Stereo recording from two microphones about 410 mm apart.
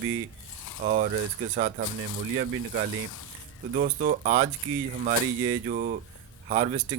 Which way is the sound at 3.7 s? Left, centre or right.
Centre.